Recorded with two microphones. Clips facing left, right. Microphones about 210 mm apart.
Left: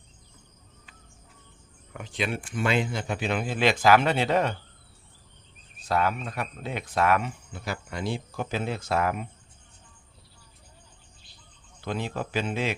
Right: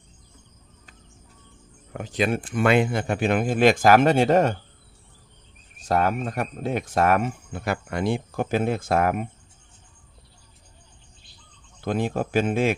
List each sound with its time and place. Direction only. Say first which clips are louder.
1.9 s speech: right 7 dB; 40° right (ahead or behind)
5.9 s speech: right 4 dB; 45° right (ahead or behind)
11.8 s speech: right 6 dB; 50° right (ahead or behind)